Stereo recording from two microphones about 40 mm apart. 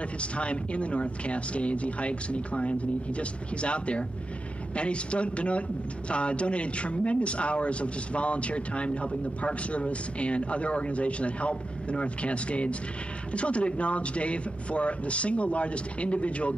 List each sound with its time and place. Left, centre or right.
0.2 s a man's voice: left